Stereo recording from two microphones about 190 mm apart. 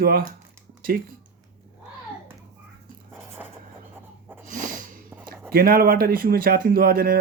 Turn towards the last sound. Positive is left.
turn(degrees=-50)  # may be behind; listen again after turning